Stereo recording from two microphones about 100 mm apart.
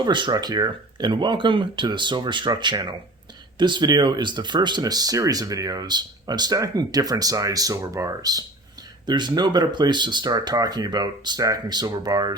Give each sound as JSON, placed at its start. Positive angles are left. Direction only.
{"t": 0.0, "sound": "speech", "side_deg": -50}